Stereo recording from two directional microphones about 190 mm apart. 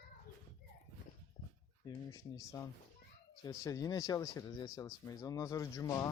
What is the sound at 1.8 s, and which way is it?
Speech, 15° left (ahead or behind).